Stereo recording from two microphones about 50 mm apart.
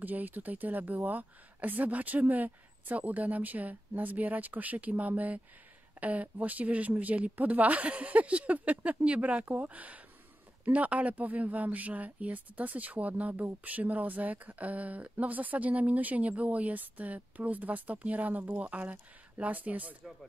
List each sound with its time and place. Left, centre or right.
0.0 s speech: right